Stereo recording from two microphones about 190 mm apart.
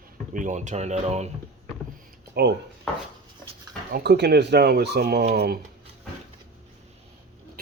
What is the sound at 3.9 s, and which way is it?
Speech, 60° right (ahead or behind).